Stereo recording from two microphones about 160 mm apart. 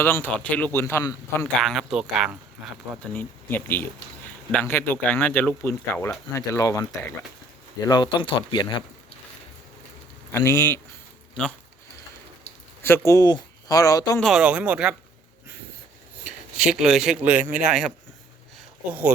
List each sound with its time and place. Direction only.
0.0 s speech: 15° left (ahead or behind)
1.6 s speech: centre (ahead or behind)
3.2 s speech: 10° left (ahead or behind)
7.9 s speech: 25° left (ahead or behind)
10.3 s speech: 15° left (ahead or behind)
12.8 s speech: 15° left (ahead or behind)
14.2 s speech: centre (ahead or behind)
16.2 s speech: 5° right (ahead or behind)